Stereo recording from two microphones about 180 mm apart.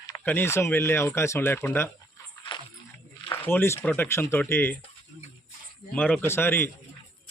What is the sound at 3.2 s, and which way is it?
Speech, 10° left (ahead or behind).